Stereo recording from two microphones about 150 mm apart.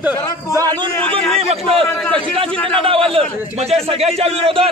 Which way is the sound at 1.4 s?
40° right (ahead or behind).